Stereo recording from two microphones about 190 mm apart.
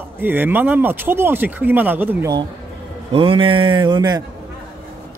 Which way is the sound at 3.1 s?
30° right (ahead or behind).